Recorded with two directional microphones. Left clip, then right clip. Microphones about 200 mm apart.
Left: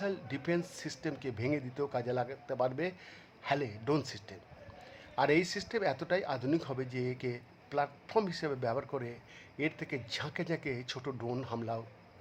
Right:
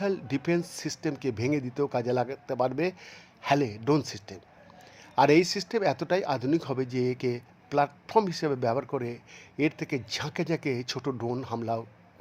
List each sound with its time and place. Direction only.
0.0 s a man's voice: 20° right (ahead or behind)
11.5 s a man's voice: 5° right (ahead or behind)